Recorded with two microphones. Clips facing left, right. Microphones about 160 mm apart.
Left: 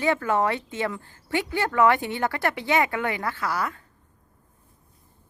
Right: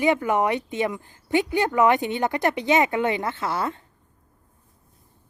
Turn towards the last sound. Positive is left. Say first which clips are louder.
# right 2 dB
turn(degrees=-25)  # may be behind; listen again after turning